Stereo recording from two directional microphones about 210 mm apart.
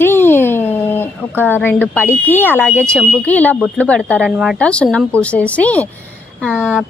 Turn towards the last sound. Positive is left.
turn(degrees=-5)  # may be behind; listen again after turning